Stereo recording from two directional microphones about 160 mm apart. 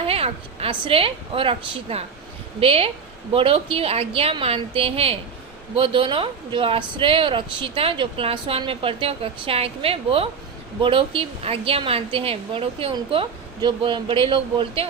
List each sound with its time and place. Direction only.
0.0 s a woman's voice: 35° right (ahead or behind)